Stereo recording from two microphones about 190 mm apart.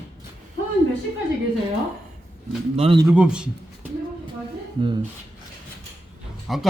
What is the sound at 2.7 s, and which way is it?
Speech, 30° right (ahead or behind).